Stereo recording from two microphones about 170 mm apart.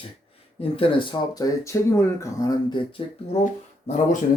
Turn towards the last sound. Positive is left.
turn(degrees=45)  # may be behind; listen again after turning